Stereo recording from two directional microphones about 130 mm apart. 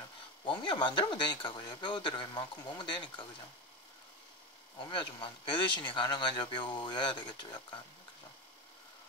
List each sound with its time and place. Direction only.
0.5 s speech: 35° left (ahead or behind)
4.7 s speech: 40° left (ahead or behind)